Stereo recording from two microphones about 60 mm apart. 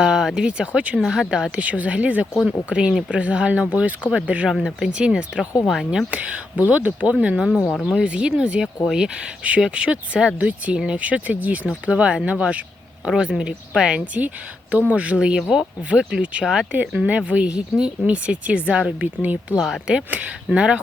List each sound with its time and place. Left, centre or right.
0.0 s speech: centre
0.9 s speech: centre
4.5 s speech: centre
4.9 s speech: centre
5.6 s speech: centre
6.1 s speech: centre
13.1 s speech: centre
16.7 s speech: right
19.5 s speech: centre
20.1 s speech: right